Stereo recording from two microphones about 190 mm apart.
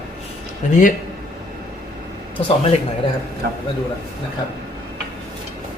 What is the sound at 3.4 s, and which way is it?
Speech, 60° right (ahead or behind).